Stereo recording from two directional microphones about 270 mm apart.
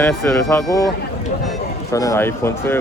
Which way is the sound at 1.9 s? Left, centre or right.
Centre.